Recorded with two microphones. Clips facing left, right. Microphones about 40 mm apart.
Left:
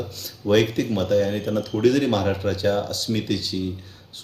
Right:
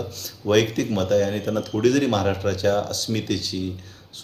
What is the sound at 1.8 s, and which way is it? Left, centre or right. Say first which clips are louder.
Speech: even; centre.